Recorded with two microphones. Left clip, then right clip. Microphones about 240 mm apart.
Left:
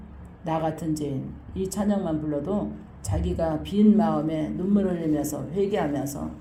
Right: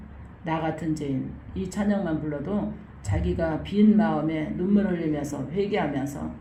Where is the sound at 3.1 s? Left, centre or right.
Left.